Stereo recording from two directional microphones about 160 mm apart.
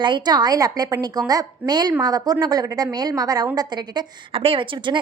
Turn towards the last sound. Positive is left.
turn(degrees=-30)  # may be behind; listen again after turning